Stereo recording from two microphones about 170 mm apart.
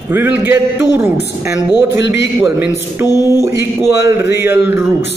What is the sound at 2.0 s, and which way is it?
A man's voice, 10° right (ahead or behind).